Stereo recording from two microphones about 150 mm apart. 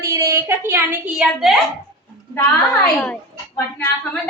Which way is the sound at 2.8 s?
5° left (ahead or behind).